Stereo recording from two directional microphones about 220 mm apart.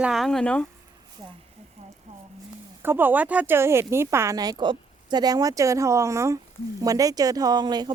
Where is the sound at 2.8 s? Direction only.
10° right (ahead or behind).